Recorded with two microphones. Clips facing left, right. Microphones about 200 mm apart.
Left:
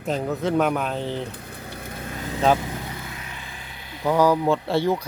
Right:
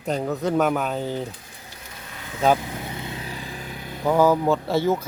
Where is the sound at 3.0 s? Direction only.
25° right (ahead or behind); by 4.0 s 45° right (ahead or behind).